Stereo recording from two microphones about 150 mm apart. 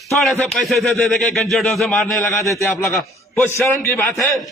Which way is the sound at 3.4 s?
15° left (ahead or behind).